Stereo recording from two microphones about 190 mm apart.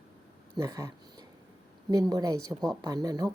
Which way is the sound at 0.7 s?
20° right (ahead or behind).